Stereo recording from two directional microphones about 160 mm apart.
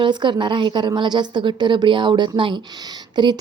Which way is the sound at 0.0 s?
30° right (ahead or behind).